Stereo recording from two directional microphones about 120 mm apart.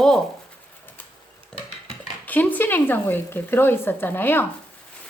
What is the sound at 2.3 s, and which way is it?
Speech, 15° left (ahead or behind).